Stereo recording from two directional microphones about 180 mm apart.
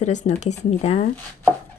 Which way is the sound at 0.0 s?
40° left (ahead or behind).